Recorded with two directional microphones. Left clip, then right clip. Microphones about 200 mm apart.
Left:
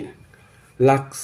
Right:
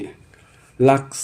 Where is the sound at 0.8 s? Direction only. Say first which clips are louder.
Right 1 dB; 20° right (ahead or behind).